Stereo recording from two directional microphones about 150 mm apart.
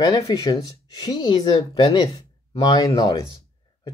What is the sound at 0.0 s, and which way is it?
Speech, 25° left (ahead or behind).